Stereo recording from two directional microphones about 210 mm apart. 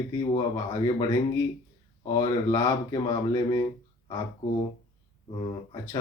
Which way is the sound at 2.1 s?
15° left (ahead or behind).